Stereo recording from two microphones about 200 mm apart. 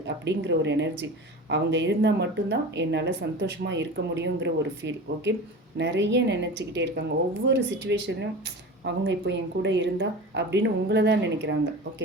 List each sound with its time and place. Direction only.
0.3 s speech: 60° right (ahead or behind)